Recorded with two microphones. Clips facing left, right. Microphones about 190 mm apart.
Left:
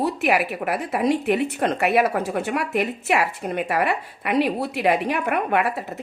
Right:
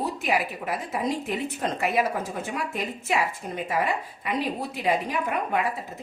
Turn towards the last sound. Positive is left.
turn(degrees=70)  # may be behind; listen again after turning